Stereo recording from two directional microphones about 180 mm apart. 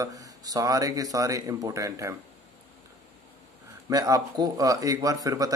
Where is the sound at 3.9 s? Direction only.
20° right (ahead or behind).